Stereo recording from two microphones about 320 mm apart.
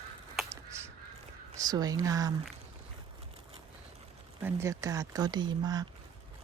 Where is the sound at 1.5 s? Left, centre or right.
Centre.